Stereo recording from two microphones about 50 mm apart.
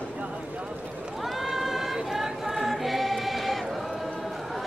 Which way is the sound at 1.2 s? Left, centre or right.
Centre.